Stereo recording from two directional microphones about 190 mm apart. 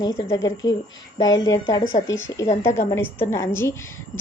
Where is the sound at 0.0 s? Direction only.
20° left (ahead or behind).